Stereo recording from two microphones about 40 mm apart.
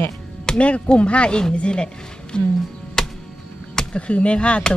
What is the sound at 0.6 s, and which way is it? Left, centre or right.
Speech, left.